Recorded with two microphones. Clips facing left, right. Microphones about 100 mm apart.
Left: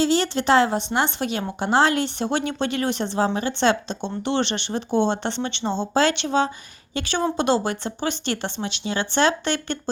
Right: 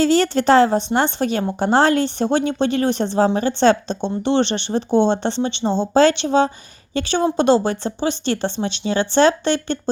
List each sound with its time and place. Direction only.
0.0 s speech: 45° right (ahead or behind)